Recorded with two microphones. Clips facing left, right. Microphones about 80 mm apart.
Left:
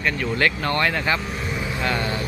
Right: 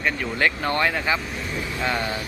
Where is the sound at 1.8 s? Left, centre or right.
Centre.